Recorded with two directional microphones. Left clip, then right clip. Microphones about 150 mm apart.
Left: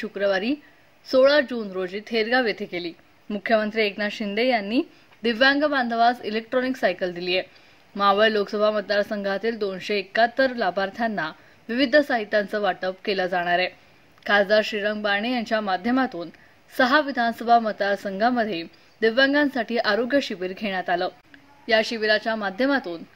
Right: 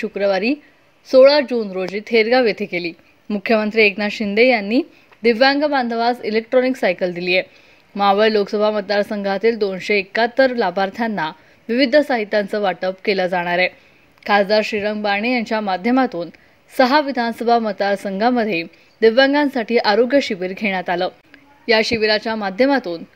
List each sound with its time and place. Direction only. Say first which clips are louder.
0.0 s a woman's voice: right 5 dB; 25° right (ahead or behind)